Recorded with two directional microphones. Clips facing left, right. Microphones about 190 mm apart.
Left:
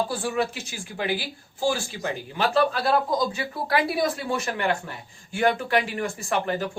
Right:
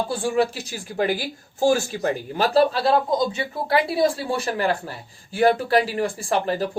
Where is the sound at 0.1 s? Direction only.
30° right (ahead or behind).